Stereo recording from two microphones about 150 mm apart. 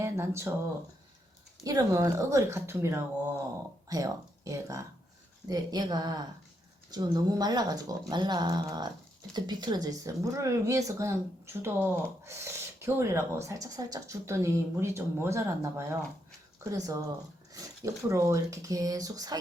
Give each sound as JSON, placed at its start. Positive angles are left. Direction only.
{"t": 0.0, "sound": "speech", "side_deg": -20}
{"t": 1.6, "sound": "speech", "side_deg": -20}